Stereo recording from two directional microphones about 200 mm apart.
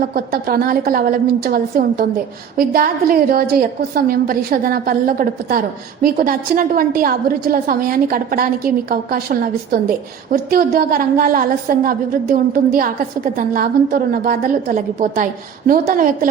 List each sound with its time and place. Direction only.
0.1 s a woman's voice: 50° right (ahead or behind)